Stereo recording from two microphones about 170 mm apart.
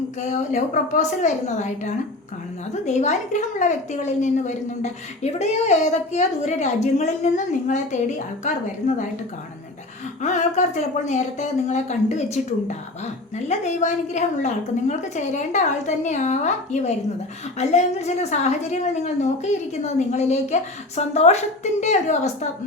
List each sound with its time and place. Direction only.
0.3 s a woman's voice: 45° left (ahead or behind)
10.2 s a woman's voice: 45° left (ahead or behind)